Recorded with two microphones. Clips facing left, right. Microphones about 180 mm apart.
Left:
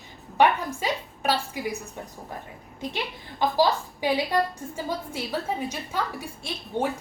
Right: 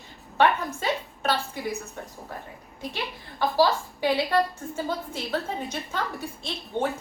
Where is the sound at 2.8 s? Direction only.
20° left (ahead or behind).